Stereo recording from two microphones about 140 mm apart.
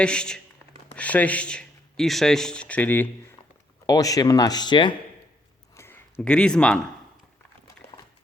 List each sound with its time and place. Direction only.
0.0 s speech: 5° left (ahead or behind)
3.8 s speech: 25° left (ahead or behind)
5.7 s a sound: 15° left (ahead or behind)
6.2 s speech: 5° left (ahead or behind)